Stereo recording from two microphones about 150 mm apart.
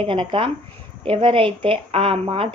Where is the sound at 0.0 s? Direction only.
35° right (ahead or behind).